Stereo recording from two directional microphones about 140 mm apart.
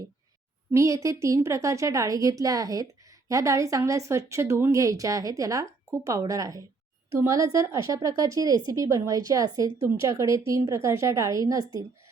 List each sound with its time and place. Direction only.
0.7 s a woman's voice: 20° right (ahead or behind)